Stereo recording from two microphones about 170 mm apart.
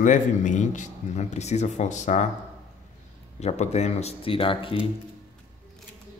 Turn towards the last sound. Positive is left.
turn(degrees=30)  # may be behind; listen again after turning